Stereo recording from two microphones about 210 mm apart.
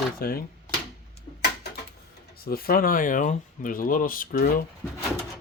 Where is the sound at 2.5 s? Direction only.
45° left (ahead or behind).